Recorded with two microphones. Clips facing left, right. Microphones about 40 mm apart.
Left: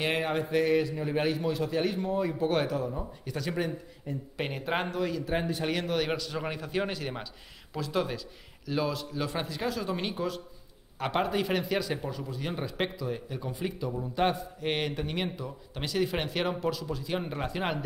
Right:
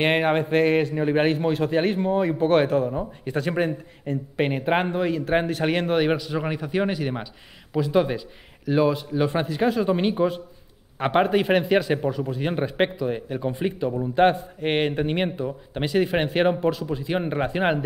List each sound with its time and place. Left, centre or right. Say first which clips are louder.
0.0 s a man's voice: right 8 dB; right
4.4 s speech: right 9 dB; right
5.2 s a man's voice: right 8 dB; right
6.0 s a man's voice: right 8 dB; centre